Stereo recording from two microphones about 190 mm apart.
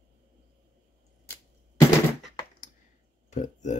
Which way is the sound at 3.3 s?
40° left (ahead or behind).